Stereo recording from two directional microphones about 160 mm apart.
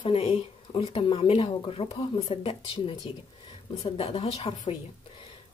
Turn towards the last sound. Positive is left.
turn(degrees=40)  # may be behind; listen again after turning